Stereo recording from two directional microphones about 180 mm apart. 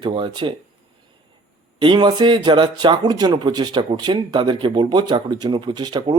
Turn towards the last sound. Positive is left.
turn(degrees=-25)  # may be behind; listen again after turning